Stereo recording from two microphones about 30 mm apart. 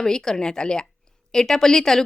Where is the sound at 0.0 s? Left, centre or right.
Centre.